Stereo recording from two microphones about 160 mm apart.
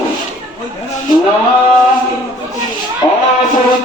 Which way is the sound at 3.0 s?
25° left (ahead or behind).